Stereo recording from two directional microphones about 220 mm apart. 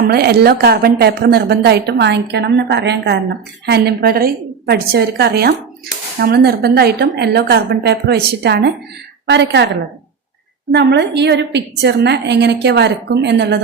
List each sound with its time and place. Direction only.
0.0 s a woman's voice: 45° right (ahead or behind)
10.7 s a woman's voice: 50° right (ahead or behind)